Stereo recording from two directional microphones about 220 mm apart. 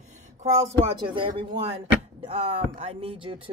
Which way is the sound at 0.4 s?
30° right (ahead or behind).